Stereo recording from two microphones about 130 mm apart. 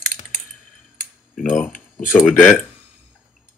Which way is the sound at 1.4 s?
5° left (ahead or behind).